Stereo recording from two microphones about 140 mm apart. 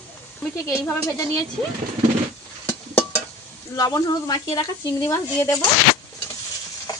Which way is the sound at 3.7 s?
25° left (ahead or behind).